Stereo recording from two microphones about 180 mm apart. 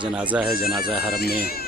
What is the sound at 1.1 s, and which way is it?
Speech, 60° left (ahead or behind).